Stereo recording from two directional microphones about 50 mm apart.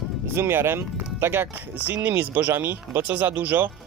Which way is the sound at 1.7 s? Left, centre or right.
Right.